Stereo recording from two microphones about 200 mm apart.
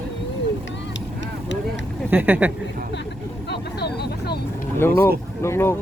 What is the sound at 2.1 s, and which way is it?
Speech, 10° right (ahead or behind).